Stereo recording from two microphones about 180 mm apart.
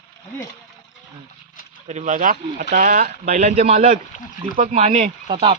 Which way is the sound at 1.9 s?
40° right (ahead or behind).